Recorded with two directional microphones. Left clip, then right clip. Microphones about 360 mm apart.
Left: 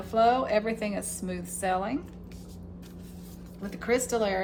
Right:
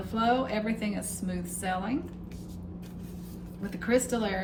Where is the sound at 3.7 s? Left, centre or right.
Centre.